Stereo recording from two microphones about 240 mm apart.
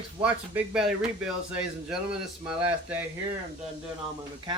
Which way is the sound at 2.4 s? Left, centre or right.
Centre.